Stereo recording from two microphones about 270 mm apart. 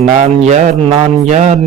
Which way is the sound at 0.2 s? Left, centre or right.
Right.